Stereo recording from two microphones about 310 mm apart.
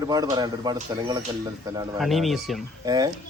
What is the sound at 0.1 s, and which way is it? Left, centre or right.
Speech, centre.